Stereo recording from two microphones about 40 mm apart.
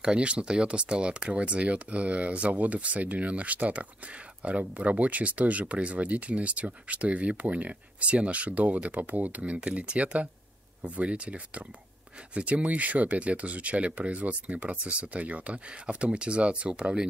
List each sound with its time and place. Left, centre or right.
0.0 s speech: right
9.4 s speech: right